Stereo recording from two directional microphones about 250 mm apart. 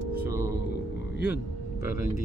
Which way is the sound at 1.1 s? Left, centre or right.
Left.